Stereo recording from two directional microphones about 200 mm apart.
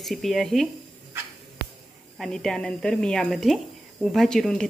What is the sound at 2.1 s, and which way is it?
Speech, centre (ahead or behind).